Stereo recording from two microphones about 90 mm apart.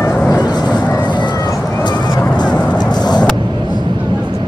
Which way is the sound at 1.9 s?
50° left (ahead or behind).